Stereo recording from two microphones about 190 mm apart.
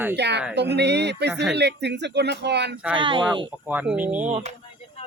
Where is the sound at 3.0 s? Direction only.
25° right (ahead or behind).